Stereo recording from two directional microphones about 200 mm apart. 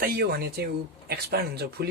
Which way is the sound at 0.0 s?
50° right (ahead or behind).